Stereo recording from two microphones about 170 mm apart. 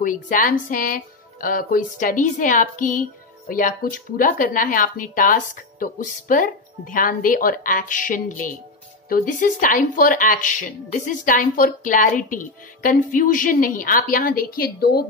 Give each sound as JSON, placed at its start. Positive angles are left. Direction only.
{"t": 0.0, "sound": "speech", "side_deg": 50}